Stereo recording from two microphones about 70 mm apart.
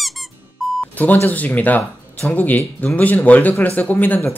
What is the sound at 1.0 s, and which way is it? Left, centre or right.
Speech, left.